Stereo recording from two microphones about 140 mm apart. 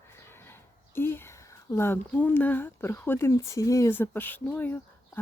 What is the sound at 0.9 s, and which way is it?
Speech, 15° left (ahead or behind).